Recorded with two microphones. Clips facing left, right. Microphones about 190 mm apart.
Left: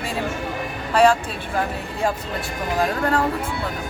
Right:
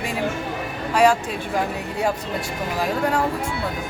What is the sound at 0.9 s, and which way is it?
Speech, 10° right (ahead or behind).